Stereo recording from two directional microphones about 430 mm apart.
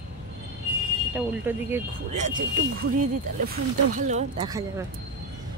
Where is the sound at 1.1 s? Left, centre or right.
Centre.